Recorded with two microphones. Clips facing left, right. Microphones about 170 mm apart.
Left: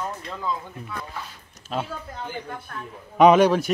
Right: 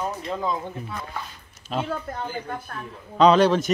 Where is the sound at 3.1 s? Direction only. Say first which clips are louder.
Left 1 dB; 15° left (ahead or behind).